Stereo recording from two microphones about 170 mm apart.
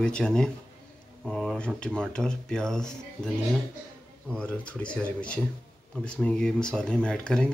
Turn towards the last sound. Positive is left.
turn(degrees=5)  # may be behind; listen again after turning